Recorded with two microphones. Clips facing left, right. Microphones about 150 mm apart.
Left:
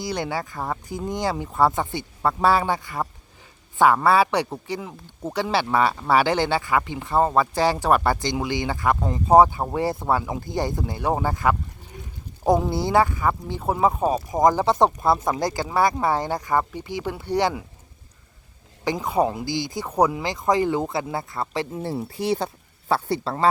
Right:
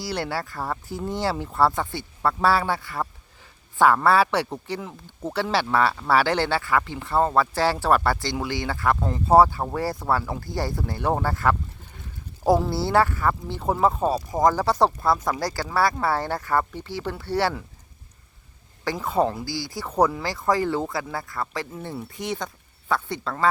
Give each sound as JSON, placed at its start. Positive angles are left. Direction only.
{"t": 0.0, "sound": "speech", "side_deg": 15}
{"t": 0.3, "sound": "speech", "side_deg": -5}
{"t": 1.0, "sound": "speech", "side_deg": 15}
{"t": 12.5, "sound": "speech", "side_deg": 15}
{"t": 18.9, "sound": "speech", "side_deg": 15}